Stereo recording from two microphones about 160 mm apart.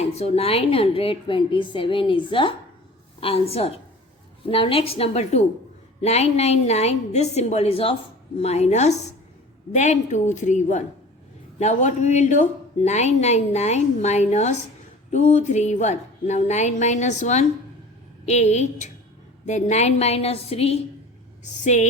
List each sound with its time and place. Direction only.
0.0 s a woman's voice: 40° left (ahead or behind)